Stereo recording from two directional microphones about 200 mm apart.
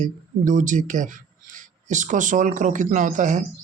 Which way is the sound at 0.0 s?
40° right (ahead or behind).